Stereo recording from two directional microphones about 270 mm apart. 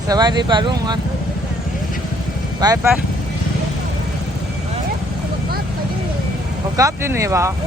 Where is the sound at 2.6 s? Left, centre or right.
Centre.